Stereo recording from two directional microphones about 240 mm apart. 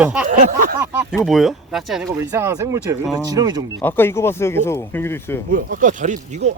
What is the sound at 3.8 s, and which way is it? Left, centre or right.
Speech, centre.